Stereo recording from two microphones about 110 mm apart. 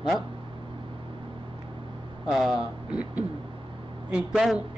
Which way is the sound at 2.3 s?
5° right (ahead or behind).